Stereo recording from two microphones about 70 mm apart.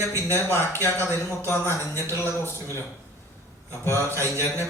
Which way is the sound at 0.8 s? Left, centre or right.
Left.